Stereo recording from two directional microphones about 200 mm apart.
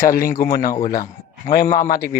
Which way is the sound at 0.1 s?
45° left (ahead or behind).